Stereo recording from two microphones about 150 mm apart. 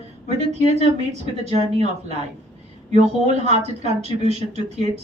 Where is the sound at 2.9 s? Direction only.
50° right (ahead or behind).